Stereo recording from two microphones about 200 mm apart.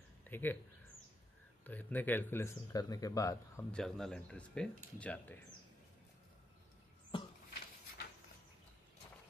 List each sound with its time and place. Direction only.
0.2 s speech: 10° left (ahead or behind)
1.6 s speech: 10° left (ahead or behind)
3.7 s speech: centre (ahead or behind)
7.1 s a sound: 25° left (ahead or behind)